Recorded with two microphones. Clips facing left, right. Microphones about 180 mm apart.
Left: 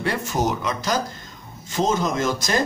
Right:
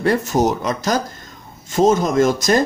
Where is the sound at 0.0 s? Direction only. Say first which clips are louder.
Right 7 dB; 45° right (ahead or behind).